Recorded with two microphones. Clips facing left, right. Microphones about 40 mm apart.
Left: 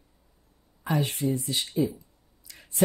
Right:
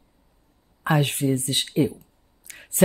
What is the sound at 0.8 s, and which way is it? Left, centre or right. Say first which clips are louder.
Speech: right 5 dB; right.